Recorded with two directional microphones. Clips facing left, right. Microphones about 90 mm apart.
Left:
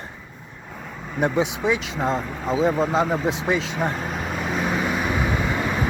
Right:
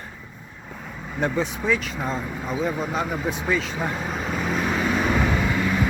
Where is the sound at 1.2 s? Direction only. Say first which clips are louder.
Left 3 dB; 15° left (ahead or behind).